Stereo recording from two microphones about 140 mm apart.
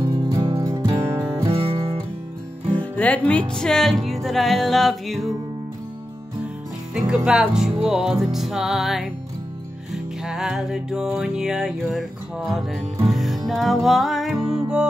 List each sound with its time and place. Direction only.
0.0 s music: 30° right (ahead or behind)
1.5 s music: 40° right (ahead or behind)
2.7 s music: 10° left (ahead or behind)
6.9 s music: 5° right (ahead or behind)
10.2 s music: 5° right (ahead or behind)